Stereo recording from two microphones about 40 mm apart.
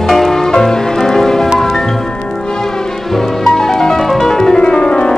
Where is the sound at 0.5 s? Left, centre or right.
Centre.